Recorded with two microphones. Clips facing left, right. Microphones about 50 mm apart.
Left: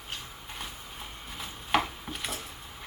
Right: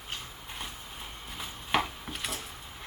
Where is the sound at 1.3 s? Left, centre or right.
Centre.